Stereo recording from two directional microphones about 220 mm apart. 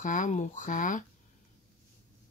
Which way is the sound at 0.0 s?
35° left (ahead or behind).